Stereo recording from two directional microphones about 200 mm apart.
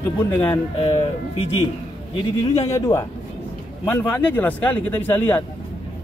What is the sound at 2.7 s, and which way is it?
A man's voice, 15° left (ahead or behind).